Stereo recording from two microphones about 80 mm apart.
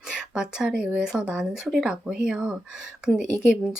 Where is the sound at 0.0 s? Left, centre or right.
Centre.